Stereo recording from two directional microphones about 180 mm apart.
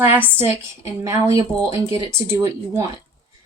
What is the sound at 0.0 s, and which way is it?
A woman's voice, 10° right (ahead or behind).